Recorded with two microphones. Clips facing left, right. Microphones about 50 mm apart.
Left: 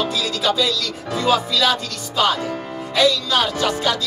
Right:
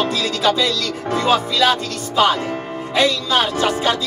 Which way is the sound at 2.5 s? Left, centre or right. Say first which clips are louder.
Right 2 dB; right.